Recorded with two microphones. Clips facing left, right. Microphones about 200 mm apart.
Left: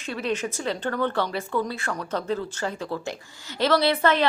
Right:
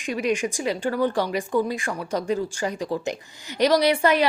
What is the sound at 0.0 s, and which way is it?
Speech, 15° right (ahead or behind).